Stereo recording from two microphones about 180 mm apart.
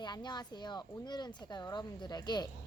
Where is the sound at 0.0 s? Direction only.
25° left (ahead or behind).